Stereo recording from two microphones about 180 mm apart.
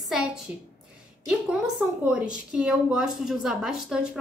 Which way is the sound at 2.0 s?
5° right (ahead or behind).